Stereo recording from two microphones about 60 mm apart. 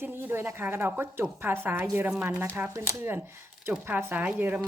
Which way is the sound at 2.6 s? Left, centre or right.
Right.